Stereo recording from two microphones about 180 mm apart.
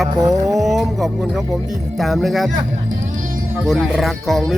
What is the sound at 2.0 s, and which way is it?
Speech, centre (ahead or behind).